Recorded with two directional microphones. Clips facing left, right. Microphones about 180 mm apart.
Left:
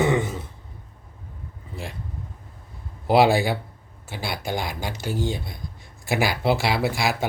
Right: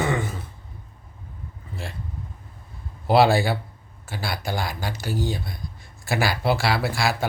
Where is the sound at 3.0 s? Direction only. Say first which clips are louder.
Even; 15° left (ahead or behind).